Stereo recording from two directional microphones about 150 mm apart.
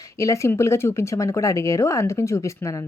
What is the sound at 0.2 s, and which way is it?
A woman's voice, 20° left (ahead or behind).